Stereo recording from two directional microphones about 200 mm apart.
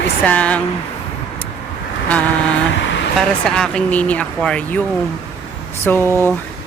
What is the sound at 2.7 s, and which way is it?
Vehicle, 65° left (ahead or behind).